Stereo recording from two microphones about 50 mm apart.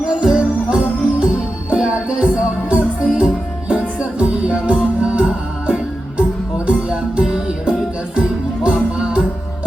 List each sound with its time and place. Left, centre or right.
0.1 s music: centre
9.0 s music: centre